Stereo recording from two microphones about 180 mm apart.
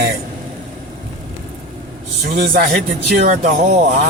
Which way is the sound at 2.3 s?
55° right (ahead or behind).